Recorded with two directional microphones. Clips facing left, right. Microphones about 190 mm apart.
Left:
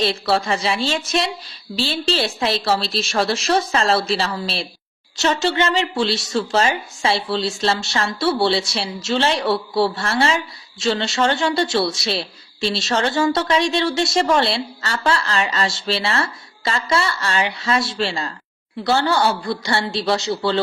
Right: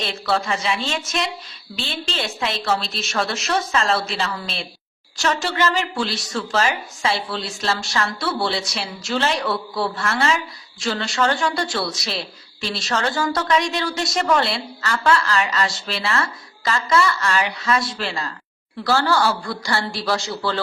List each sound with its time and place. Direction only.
0.0 s a woman's voice: 35° left (ahead or behind)